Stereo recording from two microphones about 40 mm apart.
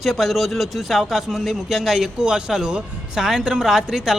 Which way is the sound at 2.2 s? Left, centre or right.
Centre.